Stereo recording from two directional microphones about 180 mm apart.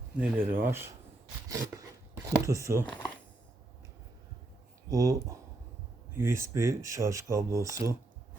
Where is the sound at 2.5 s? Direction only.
15° right (ahead or behind).